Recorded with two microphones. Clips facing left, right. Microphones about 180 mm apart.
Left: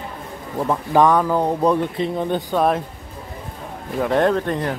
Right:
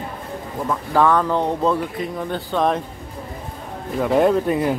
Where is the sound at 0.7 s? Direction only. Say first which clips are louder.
Left 2 dB; 15° left (ahead or behind).